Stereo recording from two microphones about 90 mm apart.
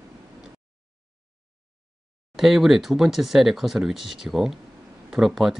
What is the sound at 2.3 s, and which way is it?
Speech, 5° right (ahead or behind).